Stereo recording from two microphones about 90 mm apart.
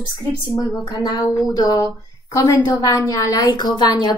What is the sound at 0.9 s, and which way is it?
A woman's voice, 50° left (ahead or behind).